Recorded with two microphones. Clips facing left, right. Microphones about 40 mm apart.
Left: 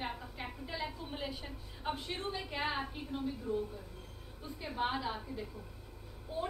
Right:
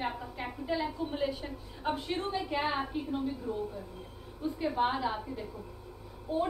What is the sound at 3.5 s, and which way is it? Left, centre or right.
A woman's voice, right.